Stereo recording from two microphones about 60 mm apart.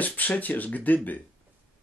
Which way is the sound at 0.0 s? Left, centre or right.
Left.